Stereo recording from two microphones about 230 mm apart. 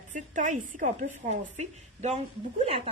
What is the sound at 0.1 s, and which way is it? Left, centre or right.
A woman's voice, right.